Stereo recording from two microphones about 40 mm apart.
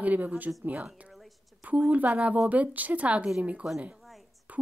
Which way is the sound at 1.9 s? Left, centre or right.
Right.